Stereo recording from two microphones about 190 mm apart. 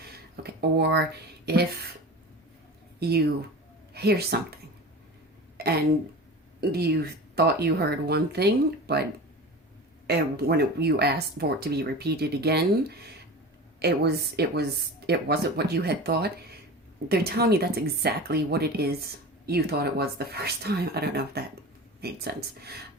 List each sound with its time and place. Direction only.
0.4 s speech: 60° right (ahead or behind)
3.0 s speech: 55° right (ahead or behind)
5.5 s a sound: 55° right (ahead or behind)
6.6 s speech: 55° right (ahead or behind)
10.1 s speech: 55° right (ahead or behind)